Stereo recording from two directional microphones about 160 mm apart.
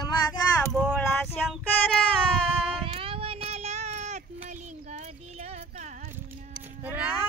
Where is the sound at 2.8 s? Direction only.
35° right (ahead or behind).